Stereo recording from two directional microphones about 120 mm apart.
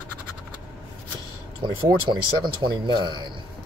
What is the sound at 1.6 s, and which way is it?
Speech, 40° right (ahead or behind).